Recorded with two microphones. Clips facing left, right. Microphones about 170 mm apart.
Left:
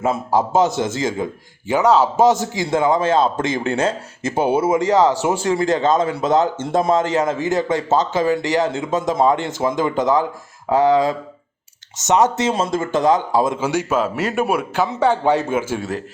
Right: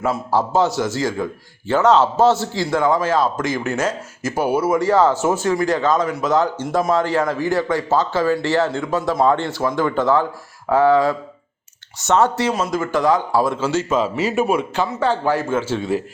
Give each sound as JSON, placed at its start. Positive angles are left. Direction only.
{"t": 0.0, "sound": "speech", "side_deg": 20}
{"t": 14.0, "sound": "a man's voice", "side_deg": 0}
{"t": 14.8, "sound": "speech", "side_deg": 15}